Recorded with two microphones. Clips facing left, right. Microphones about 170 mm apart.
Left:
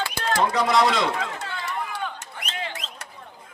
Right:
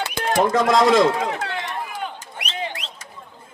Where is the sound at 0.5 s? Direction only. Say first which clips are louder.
Right 7 dB; 50° right (ahead or behind).